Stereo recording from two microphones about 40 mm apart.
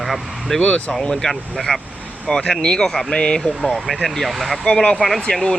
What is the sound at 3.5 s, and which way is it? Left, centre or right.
Speech, centre.